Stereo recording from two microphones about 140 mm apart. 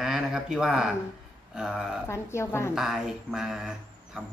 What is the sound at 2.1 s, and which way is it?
Speech, 20° left (ahead or behind).